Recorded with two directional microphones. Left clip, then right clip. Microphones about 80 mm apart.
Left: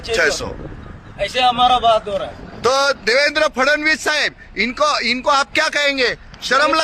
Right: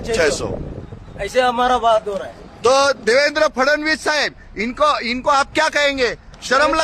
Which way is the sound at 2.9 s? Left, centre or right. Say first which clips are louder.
Even; centre.